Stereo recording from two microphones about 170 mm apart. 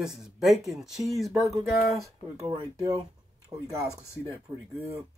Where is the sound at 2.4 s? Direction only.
35° right (ahead or behind).